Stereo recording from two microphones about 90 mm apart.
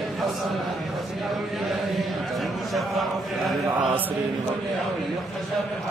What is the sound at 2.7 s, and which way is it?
Speech, centre (ahead or behind).